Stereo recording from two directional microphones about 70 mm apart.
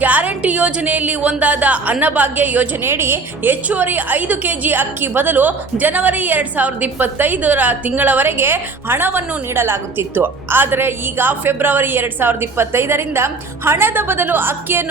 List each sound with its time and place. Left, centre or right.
0.0 s a woman's voice: right
2.9 s a woman's voice: right